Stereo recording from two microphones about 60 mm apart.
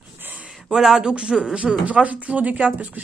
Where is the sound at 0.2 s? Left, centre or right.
Right.